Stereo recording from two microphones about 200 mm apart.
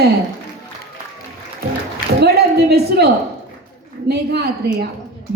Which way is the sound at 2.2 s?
50° right (ahead or behind).